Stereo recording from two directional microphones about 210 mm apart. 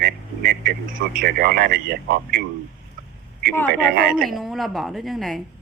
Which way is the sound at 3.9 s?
45° right (ahead or behind).